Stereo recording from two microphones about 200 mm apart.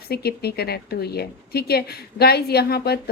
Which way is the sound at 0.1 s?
50° left (ahead or behind).